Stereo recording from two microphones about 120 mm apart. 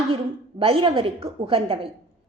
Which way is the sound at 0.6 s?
50° right (ahead or behind).